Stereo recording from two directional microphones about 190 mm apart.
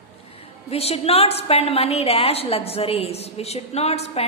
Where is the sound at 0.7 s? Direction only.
30° left (ahead or behind).